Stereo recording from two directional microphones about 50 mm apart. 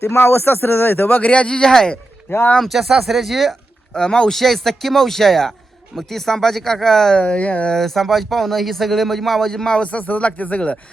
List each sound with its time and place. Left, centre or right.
0.0 s a man's voice: left
1.2 s speech: left
2.6 s speech: centre
3.9 s speech: centre
7.2 s speech: left
7.7 s speech: centre
9.8 s speech: left